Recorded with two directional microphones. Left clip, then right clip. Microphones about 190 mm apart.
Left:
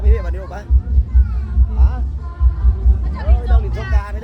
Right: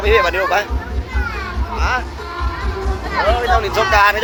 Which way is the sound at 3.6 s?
20° left (ahead or behind).